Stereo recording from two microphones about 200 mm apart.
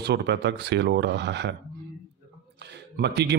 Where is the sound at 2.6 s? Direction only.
55° right (ahead or behind).